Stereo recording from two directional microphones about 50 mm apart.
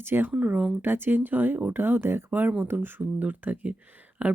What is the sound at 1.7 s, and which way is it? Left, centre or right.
Speech, right.